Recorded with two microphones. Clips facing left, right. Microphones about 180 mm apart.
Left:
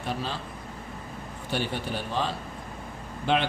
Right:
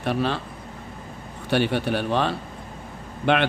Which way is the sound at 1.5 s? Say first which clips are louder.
Right 8 dB; 70° right (ahead or behind).